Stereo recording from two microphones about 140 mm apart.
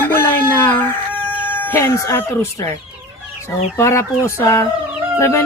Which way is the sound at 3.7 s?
20° left (ahead or behind).